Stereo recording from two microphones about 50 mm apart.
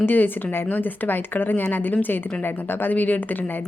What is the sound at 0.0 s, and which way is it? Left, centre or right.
A woman's voice, left.